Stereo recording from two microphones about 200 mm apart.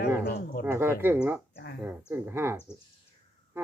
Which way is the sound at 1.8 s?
10° right (ahead or behind).